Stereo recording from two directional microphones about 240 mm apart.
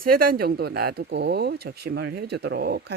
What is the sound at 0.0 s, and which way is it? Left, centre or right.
Speech, right.